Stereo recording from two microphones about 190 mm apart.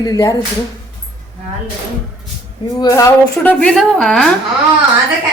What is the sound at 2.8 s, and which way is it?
A woman's voice, 15° left (ahead or behind).